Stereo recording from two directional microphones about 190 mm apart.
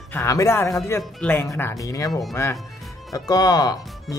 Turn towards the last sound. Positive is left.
turn(degrees=20)  # may be behind; listen again after turning